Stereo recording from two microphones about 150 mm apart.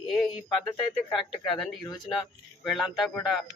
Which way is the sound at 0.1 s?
Centre (ahead or behind).